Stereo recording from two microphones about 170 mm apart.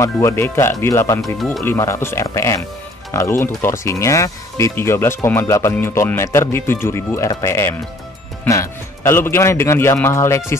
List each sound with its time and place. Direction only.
0.0 s speech: 15° left (ahead or behind)
1.2 s speech: centre (ahead or behind)
1.6 s speech: 15° left (ahead or behind)